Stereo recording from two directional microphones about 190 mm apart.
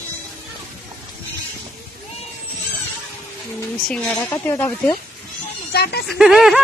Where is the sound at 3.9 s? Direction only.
5° left (ahead or behind).